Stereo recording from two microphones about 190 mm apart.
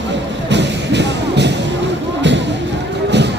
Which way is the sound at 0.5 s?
65° right (ahead or behind).